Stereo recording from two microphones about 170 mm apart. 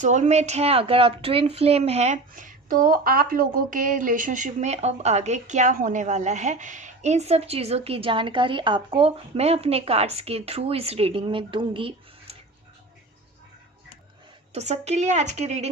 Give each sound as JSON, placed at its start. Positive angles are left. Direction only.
{"t": 0.0, "sound": "speech", "side_deg": -45}
{"t": 14.5, "sound": "speech", "side_deg": -40}